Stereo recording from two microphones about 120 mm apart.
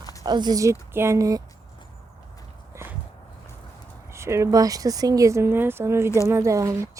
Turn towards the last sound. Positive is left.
turn(degrees=-25)  # may be behind; listen again after turning